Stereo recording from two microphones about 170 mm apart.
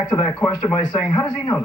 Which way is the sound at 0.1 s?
25° left (ahead or behind).